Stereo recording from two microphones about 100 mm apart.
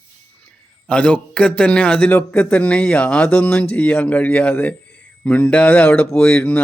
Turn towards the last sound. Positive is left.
turn(degrees=10)  # may be behind; listen again after turning